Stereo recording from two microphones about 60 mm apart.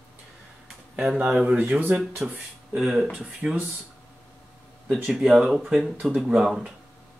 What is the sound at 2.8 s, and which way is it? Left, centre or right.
Speech, centre.